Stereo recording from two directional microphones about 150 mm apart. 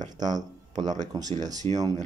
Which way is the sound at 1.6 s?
40° right (ahead or behind).